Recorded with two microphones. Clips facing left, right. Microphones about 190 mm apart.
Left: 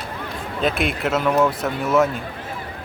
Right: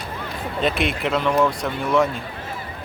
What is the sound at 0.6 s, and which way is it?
Speech, centre (ahead or behind).